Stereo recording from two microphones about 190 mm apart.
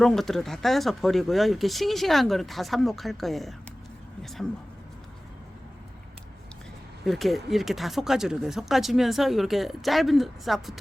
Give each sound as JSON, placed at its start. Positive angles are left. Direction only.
{"t": 0.0, "sound": "speech", "side_deg": 0}
{"t": 7.0, "sound": "speech", "side_deg": 0}